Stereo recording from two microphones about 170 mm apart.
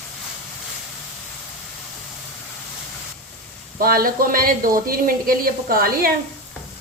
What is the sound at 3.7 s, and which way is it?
Speech, 60° right (ahead or behind).